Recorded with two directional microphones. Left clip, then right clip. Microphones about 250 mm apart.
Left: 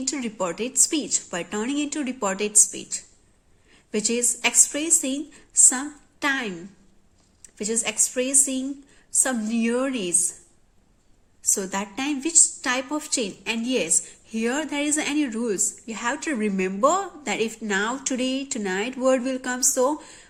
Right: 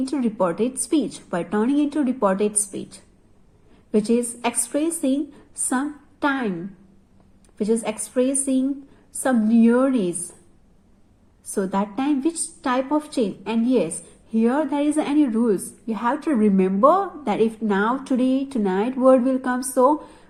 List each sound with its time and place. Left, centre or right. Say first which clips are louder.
0.0 s a woman's voice: right 5 dB; centre
7.6 s a woman's voice: right 3 dB; centre
11.5 s a woman's voice: right 6 dB; centre